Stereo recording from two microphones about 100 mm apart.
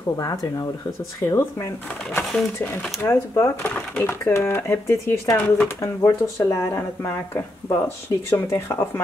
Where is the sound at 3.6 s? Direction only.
15° left (ahead or behind).